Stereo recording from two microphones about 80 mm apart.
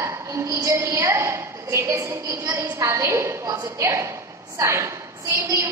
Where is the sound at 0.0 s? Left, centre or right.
Right.